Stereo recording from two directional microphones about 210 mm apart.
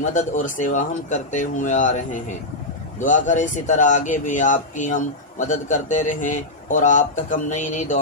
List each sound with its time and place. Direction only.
0.0 s a man's voice: 35° left (ahead or behind)